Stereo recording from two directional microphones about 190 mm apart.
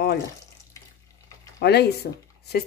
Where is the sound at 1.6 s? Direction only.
60° left (ahead or behind).